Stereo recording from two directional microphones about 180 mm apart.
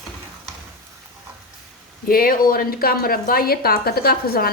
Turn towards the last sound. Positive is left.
turn(degrees=60)  # may be behind; listen again after turning